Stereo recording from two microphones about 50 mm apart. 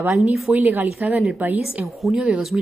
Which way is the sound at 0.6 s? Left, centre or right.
Right.